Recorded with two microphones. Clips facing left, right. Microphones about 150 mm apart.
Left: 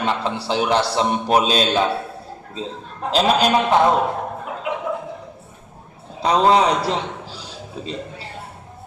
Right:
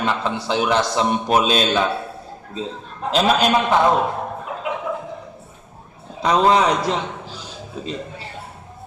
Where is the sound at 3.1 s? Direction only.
35° left (ahead or behind).